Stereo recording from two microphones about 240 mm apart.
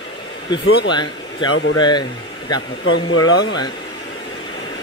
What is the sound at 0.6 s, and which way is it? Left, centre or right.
Speech, left.